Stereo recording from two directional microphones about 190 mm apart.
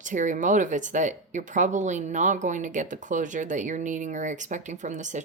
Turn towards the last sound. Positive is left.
turn(degrees=-40)  # may be behind; listen again after turning